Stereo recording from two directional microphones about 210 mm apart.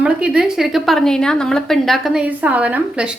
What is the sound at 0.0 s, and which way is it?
A woman's voice, 5° right (ahead or behind).